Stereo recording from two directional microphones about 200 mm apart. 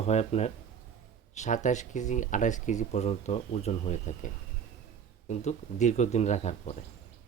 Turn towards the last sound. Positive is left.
turn(degrees=35)  # may be behind; listen again after turning